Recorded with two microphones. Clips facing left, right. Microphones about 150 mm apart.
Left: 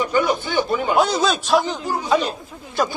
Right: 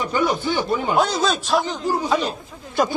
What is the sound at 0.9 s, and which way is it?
Speech, 5° left (ahead or behind).